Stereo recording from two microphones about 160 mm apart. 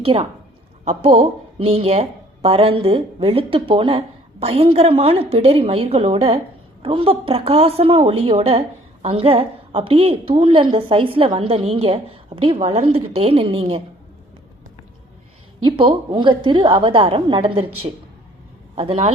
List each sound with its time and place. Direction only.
0.0 s a woman's voice: 35° right (ahead or behind)
15.6 s a woman's voice: 35° right (ahead or behind)
18.8 s a woman's voice: 40° right (ahead or behind)